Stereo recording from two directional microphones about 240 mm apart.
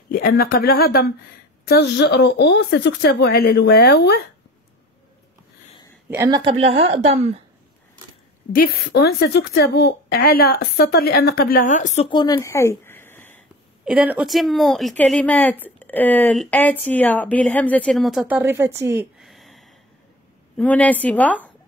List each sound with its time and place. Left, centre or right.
0.1 s a woman's voice: left
6.0 s a woman's voice: centre; by 7.3 s right
8.5 s a woman's voice: left; by 13.4 s centre
13.8 s a woman's voice: centre